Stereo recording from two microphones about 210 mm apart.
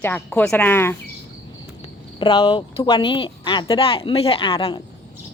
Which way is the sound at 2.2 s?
25° left (ahead or behind).